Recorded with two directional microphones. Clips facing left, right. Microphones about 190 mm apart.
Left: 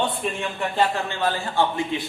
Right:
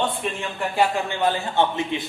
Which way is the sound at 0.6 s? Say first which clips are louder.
Right 2 dB; 10° right (ahead or behind).